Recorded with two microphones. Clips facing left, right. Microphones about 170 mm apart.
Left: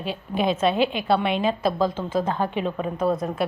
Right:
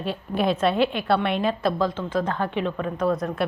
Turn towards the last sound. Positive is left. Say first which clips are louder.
# even
turn(degrees=20)  # may be behind; listen again after turning